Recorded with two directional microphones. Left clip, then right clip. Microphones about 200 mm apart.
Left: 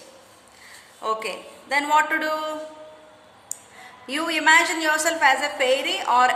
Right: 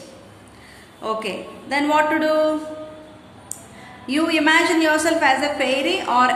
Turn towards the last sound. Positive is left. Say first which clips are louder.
# right 2 dB
turn(degrees=30)  # may be behind; listen again after turning